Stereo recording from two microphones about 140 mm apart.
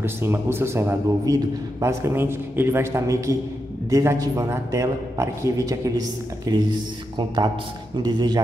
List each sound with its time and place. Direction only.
0.0 s a man's voice: 15° right (ahead or behind)